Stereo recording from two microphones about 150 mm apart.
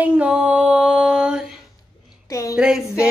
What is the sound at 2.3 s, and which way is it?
Speech, 20° left (ahead or behind).